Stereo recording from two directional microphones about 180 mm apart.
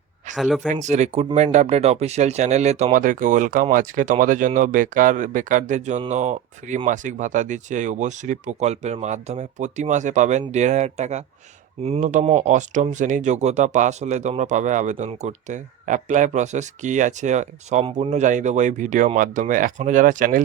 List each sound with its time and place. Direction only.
0.3 s speech: centre (ahead or behind)
0.7 s speech: 40° right (ahead or behind)